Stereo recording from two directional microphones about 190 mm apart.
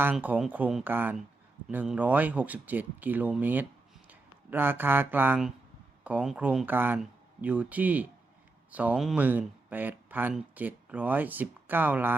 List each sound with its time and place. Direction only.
0.0 s speech: 10° right (ahead or behind)